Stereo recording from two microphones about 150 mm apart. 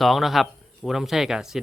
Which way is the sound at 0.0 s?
Centre (ahead or behind).